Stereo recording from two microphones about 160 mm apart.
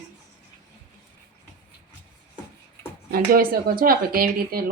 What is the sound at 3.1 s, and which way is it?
Speech, 65° right (ahead or behind).